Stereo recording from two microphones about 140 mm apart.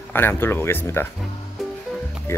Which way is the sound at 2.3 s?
15° left (ahead or behind).